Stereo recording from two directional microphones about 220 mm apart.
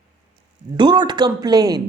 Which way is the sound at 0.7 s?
20° right (ahead or behind).